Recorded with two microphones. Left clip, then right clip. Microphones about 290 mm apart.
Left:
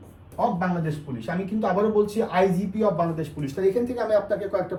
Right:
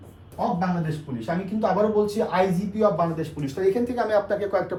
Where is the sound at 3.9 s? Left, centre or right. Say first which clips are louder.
Even; centre.